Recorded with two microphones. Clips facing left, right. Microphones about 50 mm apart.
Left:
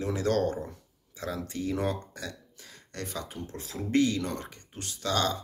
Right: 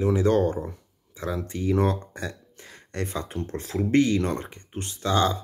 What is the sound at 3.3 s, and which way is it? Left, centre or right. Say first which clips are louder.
Speech: right 9 dB; right.